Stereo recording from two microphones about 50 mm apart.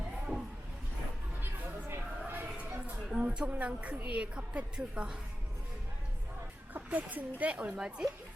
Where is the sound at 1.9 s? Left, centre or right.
Right.